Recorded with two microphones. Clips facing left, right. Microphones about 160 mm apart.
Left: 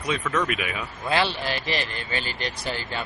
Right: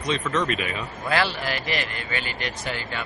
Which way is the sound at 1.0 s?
25° left (ahead or behind).